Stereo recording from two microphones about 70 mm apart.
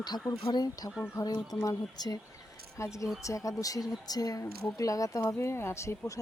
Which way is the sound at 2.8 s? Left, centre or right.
Left.